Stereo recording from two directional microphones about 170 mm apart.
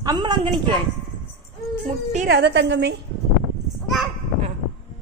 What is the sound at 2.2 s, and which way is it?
Speech, 85° right.